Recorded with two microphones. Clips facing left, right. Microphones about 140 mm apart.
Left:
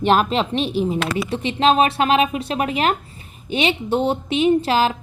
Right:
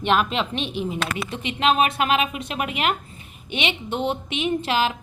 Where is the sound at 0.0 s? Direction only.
35° left (ahead or behind).